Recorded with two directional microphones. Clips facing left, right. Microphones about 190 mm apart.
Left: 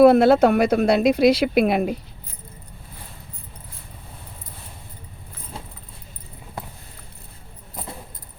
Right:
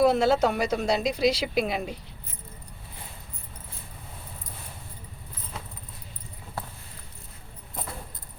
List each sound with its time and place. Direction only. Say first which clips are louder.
0.0 s speech: left 8 dB; 60° left (ahead or behind)